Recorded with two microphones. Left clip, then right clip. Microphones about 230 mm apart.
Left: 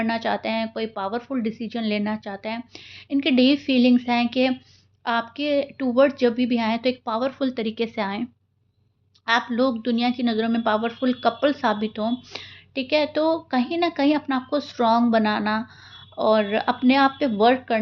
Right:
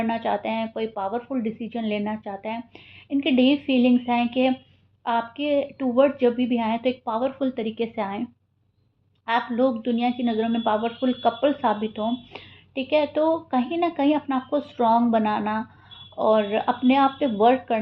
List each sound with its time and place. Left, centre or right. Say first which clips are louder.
0.0 s a woman's voice: even; left